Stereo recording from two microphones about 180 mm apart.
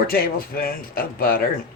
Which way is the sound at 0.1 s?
55° left (ahead or behind).